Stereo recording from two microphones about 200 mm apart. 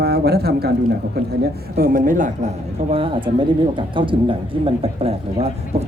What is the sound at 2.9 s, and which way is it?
Speech, 25° right (ahead or behind).